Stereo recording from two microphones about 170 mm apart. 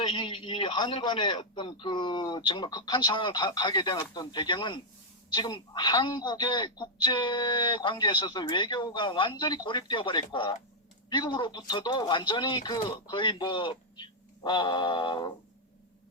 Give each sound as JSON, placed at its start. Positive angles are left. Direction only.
{"t": 0.0, "sound": "speech", "side_deg": 30}